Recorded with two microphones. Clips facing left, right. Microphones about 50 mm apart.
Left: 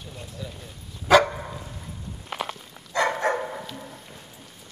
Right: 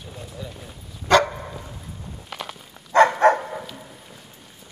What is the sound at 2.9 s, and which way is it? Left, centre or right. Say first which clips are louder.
Dog: right 9 dB; right.